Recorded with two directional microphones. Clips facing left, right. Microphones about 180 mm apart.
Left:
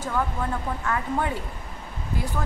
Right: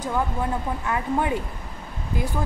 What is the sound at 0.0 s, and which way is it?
A woman's voice, 15° right (ahead or behind).